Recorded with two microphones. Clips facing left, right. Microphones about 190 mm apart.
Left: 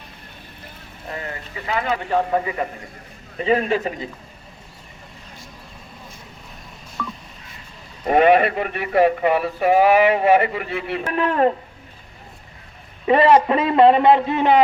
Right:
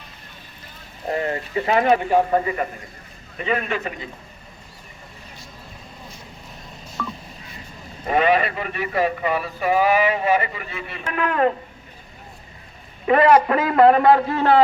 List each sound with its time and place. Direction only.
1.0 s speech: 30° right (ahead or behind)
3.3 s a man's voice: 30° left (ahead or behind)
8.1 s speech: 55° left (ahead or behind)
11.1 s a man's voice: 30° left (ahead or behind)
13.1 s a man's voice: 30° left (ahead or behind)